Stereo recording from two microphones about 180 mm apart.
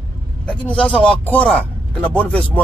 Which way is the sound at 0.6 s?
5° left (ahead or behind).